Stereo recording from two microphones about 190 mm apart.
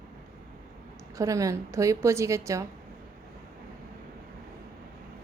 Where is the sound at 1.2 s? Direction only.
15° right (ahead or behind).